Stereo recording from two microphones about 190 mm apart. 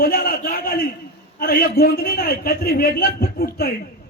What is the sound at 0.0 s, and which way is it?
A man's voice, 50° left (ahead or behind).